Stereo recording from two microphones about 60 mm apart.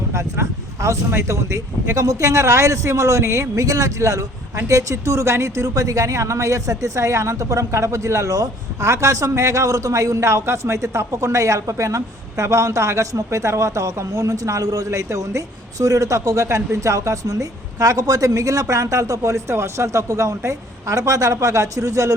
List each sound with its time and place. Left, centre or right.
0.1 s speech: right
5.6 s speech: right
14.8 s speech: right